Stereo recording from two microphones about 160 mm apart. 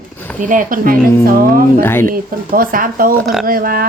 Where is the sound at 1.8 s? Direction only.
15° left (ahead or behind).